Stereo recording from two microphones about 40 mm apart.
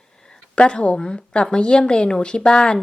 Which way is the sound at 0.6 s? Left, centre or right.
Left.